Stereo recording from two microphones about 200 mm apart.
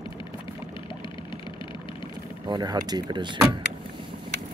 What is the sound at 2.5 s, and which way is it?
Speech, 20° right (ahead or behind).